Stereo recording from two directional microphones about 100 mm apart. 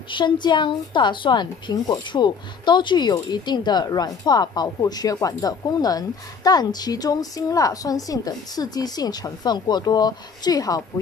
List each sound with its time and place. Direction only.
0.1 s speech: 50° left (ahead or behind)